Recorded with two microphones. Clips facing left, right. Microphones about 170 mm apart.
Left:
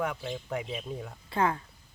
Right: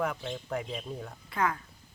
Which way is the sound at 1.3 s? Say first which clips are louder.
Left 3 dB; 30° left (ahead or behind).